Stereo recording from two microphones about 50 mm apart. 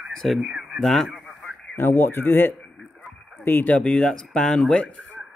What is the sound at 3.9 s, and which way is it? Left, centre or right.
Speech, centre.